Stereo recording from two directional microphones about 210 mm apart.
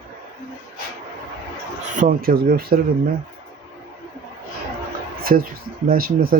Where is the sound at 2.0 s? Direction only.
45° right (ahead or behind).